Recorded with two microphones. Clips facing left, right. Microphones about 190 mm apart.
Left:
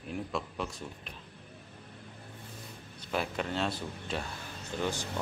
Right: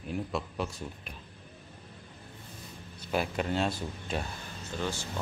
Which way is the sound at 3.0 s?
5° right (ahead or behind).